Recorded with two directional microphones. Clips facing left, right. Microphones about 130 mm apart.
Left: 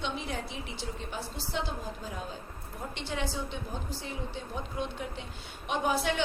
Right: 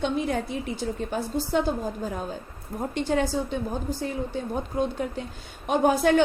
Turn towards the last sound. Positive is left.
turn(degrees=-45)  # may be behind; listen again after turning